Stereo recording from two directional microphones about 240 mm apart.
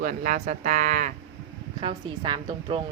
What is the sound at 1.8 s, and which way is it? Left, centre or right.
Speech, right.